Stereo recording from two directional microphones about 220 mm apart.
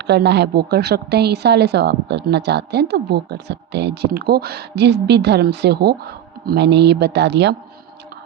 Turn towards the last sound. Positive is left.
turn(degrees=-50)  # may be behind; listen again after turning